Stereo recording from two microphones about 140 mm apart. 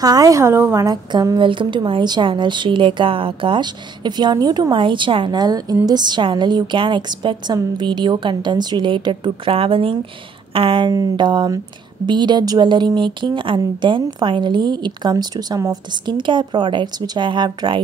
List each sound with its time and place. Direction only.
0.0 s a woman's voice: 25° right (ahead or behind)